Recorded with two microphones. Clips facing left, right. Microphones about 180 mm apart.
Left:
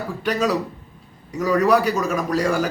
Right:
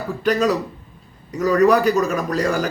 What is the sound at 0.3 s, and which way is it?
A man's voice, 10° left (ahead or behind).